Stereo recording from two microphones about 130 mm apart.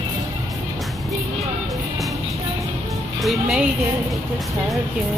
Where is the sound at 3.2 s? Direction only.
5° right (ahead or behind).